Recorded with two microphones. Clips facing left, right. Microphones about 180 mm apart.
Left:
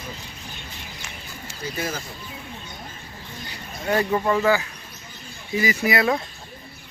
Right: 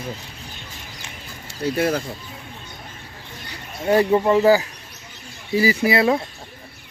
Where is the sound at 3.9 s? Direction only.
25° right (ahead or behind).